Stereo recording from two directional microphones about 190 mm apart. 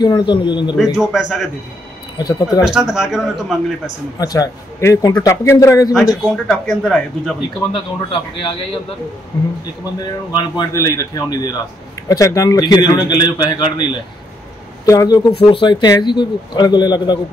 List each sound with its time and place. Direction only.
0.0 s speech: 25° left (ahead or behind)
0.9 s speech: centre (ahead or behind)
2.1 s speech: 20° left (ahead or behind)
2.6 s speech: centre (ahead or behind)
3.8 s a man's voice: 20° left (ahead or behind)
6.3 s speech: centre (ahead or behind)
7.7 s a man's voice: 25° left (ahead or behind)
14.9 s speech: 20° left (ahead or behind)